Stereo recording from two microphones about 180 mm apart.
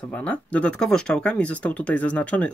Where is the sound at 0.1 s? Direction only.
10° left (ahead or behind).